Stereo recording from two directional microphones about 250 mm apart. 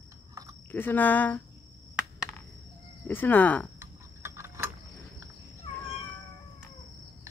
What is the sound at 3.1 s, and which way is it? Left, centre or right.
Speech, centre.